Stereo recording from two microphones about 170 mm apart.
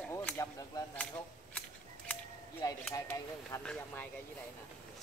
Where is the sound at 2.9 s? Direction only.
15° left (ahead or behind).